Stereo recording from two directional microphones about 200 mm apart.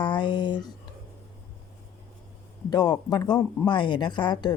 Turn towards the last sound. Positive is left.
turn(degrees=20)  # may be behind; listen again after turning